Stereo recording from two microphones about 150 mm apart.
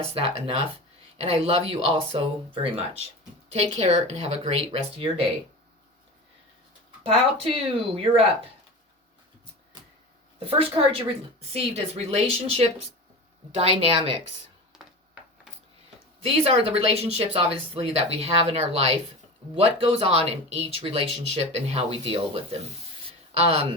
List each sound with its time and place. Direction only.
0.0 s speech: 40° right (ahead or behind)
7.0 s speech: 40° right (ahead or behind)
10.4 s speech: 40° right (ahead or behind)
14.7 s a sound: 5° right (ahead or behind)
16.2 s speech: 40° right (ahead or behind)